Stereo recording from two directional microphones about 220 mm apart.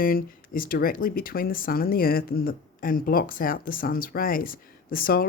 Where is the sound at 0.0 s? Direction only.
40° left (ahead or behind).